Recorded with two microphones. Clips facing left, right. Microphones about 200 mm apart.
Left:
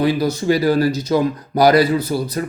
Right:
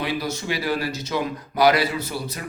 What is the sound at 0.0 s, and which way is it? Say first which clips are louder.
Speech: left 9 dB; 35° left (ahead or behind).